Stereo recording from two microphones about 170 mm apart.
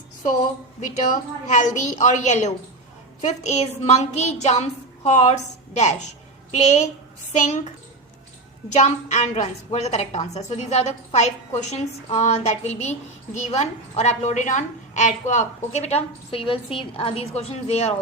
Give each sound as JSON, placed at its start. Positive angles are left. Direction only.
{"t": 1.5, "sound": "a child's voice", "side_deg": 45}
{"t": 8.7, "sound": "a woman's voice", "side_deg": 40}